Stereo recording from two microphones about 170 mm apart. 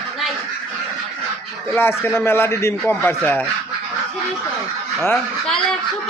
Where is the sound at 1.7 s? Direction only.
15° left (ahead or behind).